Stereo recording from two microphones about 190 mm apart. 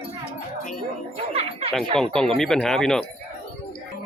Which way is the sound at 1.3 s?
30° right (ahead or behind).